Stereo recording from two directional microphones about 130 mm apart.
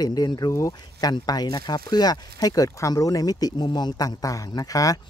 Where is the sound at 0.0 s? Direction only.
30° left (ahead or behind).